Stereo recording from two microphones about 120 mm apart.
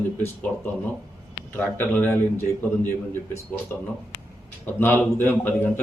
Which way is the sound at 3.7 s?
20° left (ahead or behind).